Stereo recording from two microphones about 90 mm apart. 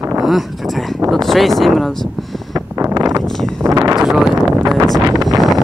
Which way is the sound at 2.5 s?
35° right (ahead or behind).